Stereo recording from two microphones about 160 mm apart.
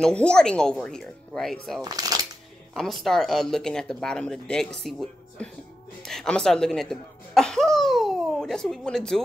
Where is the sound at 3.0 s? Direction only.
Centre (ahead or behind).